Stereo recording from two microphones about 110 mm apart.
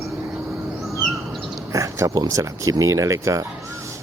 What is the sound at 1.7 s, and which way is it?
Speech, 30° right (ahead or behind).